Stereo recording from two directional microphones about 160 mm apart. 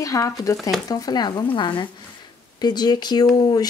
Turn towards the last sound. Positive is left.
turn(degrees=25)  # may be behind; listen again after turning